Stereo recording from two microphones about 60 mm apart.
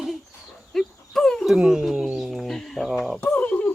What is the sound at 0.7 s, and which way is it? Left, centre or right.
Dog, centre.